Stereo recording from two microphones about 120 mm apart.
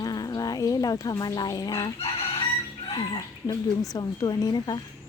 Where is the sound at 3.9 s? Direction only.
35° left (ahead or behind).